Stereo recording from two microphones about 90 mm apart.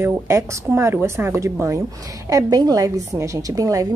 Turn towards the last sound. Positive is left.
turn(degrees=-40)  # may be behind; listen again after turning